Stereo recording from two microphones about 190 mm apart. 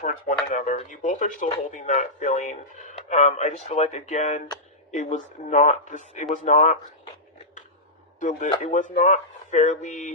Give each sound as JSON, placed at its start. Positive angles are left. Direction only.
{"t": 0.0, "sound": "speech", "side_deg": 45}
{"t": 8.2, "sound": "speech", "side_deg": 40}